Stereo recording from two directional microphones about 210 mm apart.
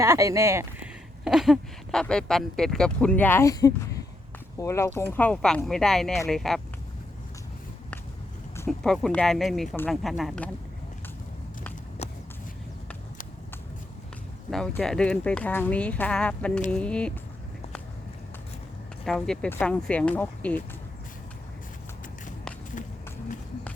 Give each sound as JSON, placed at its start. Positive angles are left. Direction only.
{"t": 0.0, "sound": "speech", "side_deg": -15}
{"t": 8.5, "sound": "speech", "side_deg": 5}
{"t": 12.0, "sound": "vehicle", "side_deg": 30}
{"t": 14.5, "sound": "speech", "side_deg": 5}
{"t": 19.0, "sound": "speech", "side_deg": 5}